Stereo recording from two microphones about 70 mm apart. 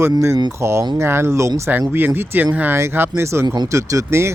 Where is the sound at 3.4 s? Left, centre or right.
Right.